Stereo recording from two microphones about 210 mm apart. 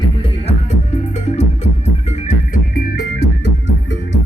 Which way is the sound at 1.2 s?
30° left (ahead or behind).